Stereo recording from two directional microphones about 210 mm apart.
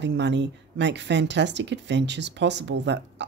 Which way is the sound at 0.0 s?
55° right (ahead or behind).